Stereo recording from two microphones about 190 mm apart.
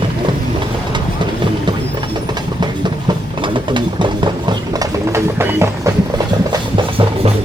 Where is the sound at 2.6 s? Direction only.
25° right (ahead or behind).